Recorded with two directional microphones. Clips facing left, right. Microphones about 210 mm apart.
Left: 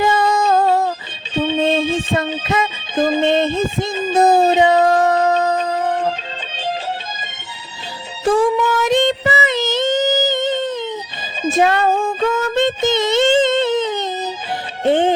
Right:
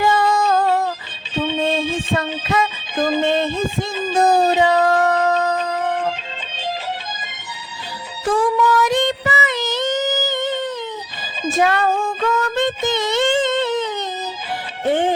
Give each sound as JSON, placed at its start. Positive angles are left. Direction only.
{"t": 0.0, "sound": "music", "side_deg": 25}
{"t": 8.2, "sound": "child singing", "side_deg": 25}
{"t": 11.4, "sound": "female singing", "side_deg": 25}
{"t": 14.8, "sound": "speech", "side_deg": 25}